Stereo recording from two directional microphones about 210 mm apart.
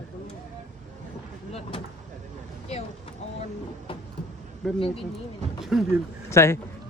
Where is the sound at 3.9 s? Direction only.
25° left (ahead or behind).